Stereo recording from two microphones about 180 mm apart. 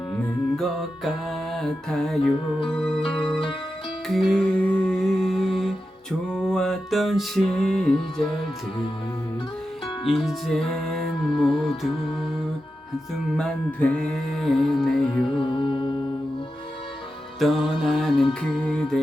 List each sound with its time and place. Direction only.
0.5 s music: centre (ahead or behind)
3.0 s music: 30° left (ahead or behind)
4.1 s music: centre (ahead or behind)
10.1 s music: centre (ahead or behind)
13.3 s music: 5° left (ahead or behind)
15.2 s music: 30° left (ahead or behind)
17.4 s music: centre (ahead or behind)